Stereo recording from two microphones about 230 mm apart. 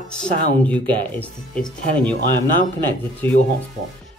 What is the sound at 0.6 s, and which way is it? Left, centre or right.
Speech, centre.